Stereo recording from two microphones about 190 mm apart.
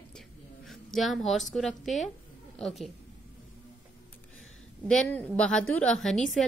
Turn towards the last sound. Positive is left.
turn(degrees=0)  # may be behind; listen again after turning